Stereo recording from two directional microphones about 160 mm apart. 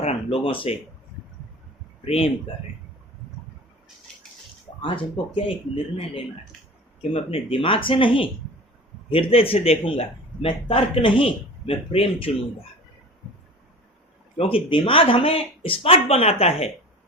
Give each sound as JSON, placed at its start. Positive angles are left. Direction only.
{"t": 0.0, "sound": "speech", "side_deg": 40}
{"t": 2.0, "sound": "a man's voice", "side_deg": 40}
{"t": 4.8, "sound": "a man's voice", "side_deg": 35}
{"t": 14.3, "sound": "a man's voice", "side_deg": 35}